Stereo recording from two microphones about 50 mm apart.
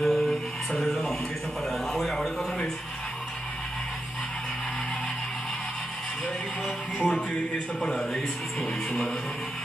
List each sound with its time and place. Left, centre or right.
0.0 s music: centre
1.7 s a sound: centre
7.0 s speech: centre